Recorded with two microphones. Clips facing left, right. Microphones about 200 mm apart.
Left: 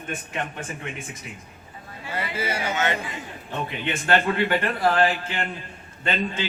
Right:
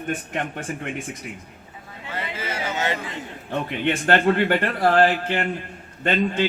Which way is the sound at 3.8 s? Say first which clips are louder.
Right 4 dB; 50° right (ahead or behind).